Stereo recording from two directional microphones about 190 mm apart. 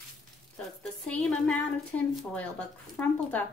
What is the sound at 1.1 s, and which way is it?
A woman's voice, centre (ahead or behind).